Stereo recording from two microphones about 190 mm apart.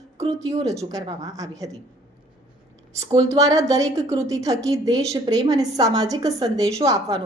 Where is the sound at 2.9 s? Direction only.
15° right (ahead or behind).